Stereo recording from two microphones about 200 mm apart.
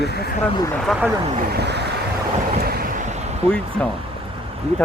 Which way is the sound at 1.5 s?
60° right (ahead or behind).